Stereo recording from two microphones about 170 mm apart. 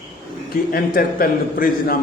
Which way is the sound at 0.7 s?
55° left (ahead or behind).